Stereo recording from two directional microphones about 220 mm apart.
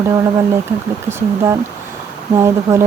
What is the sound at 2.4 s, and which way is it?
Speech, 10° right (ahead or behind).